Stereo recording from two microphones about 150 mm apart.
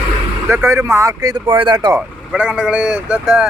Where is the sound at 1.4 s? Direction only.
35° right (ahead or behind).